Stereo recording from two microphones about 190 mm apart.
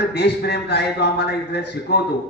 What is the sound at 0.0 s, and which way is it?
A man's voice, 60° left (ahead or behind).